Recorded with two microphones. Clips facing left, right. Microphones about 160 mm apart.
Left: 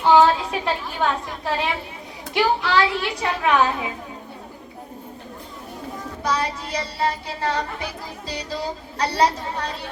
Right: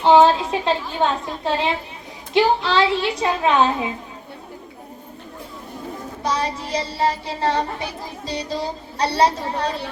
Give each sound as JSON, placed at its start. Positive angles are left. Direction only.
{"t": 0.0, "sound": "a woman's voice", "side_deg": -25}
{"t": 6.2, "sound": "a woman's voice", "side_deg": -30}
{"t": 9.0, "sound": "a woman's voice", "side_deg": -30}